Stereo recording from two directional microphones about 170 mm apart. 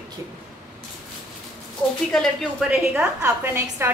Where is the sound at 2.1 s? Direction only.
5° left (ahead or behind).